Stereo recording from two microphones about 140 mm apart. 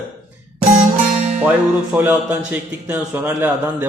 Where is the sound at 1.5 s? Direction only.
10° right (ahead or behind).